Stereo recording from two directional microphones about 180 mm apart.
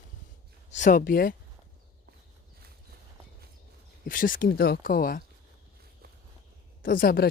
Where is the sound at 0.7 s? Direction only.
45° left (ahead or behind).